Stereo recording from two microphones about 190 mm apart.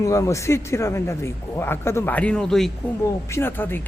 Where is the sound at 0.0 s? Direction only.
15° left (ahead or behind).